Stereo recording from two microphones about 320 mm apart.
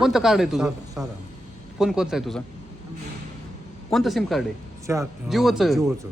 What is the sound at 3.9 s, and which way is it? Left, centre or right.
Speech, centre.